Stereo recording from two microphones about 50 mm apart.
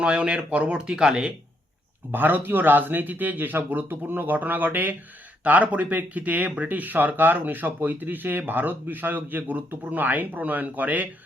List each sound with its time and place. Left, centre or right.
0.0 s speech: right
2.1 s speech: right